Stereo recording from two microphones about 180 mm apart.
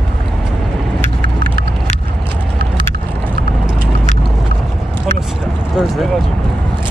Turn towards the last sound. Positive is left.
turn(degrees=0)  # may be behind; listen again after turning